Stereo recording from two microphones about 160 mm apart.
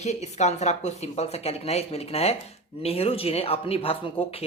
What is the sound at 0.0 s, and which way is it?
Speech, 45° left (ahead or behind).